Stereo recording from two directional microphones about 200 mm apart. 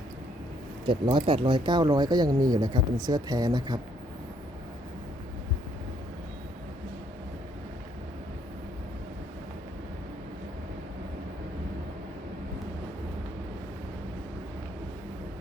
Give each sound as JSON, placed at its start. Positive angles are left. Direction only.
{"t": 0.9, "sound": "speech", "side_deg": -25}